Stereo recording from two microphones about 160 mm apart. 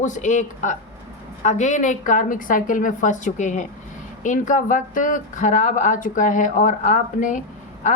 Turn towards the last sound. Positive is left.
turn(degrees=50)  # may be behind; listen again after turning